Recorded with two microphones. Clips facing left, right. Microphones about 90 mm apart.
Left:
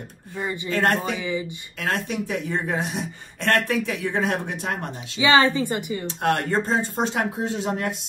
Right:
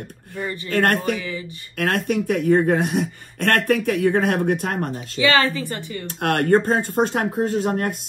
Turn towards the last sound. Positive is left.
turn(degrees=-50)  # may be behind; listen again after turning